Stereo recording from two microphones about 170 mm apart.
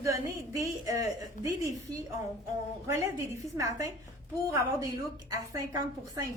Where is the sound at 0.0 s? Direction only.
20° right (ahead or behind).